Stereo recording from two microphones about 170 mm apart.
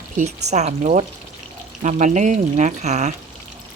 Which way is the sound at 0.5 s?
45° right (ahead or behind).